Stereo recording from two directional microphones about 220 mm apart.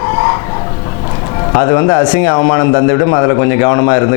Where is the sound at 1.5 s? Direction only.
20° left (ahead or behind).